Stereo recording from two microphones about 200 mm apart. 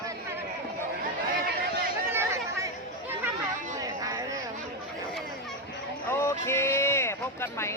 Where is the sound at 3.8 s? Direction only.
15° right (ahead or behind).